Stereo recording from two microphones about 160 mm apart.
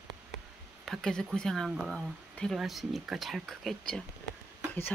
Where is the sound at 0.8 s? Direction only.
5° left (ahead or behind).